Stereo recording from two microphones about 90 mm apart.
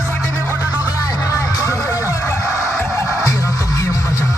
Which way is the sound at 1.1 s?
35° left (ahead or behind).